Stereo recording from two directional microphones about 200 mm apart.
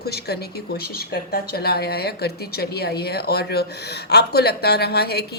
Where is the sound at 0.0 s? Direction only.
50° left (ahead or behind).